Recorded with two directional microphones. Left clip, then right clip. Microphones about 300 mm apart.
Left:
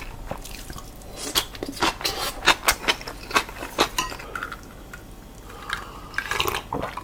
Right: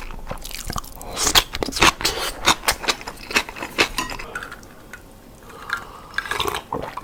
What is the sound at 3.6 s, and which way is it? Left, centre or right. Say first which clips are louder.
Cutlery: right 3 dB; right.